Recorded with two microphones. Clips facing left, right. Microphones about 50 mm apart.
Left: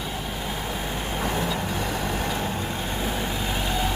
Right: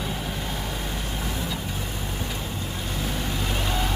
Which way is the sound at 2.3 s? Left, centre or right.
Left.